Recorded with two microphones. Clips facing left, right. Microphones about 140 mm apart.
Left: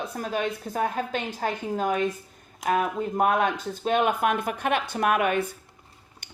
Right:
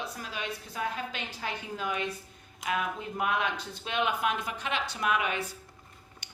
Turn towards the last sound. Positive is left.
turn(degrees=50)  # may be behind; listen again after turning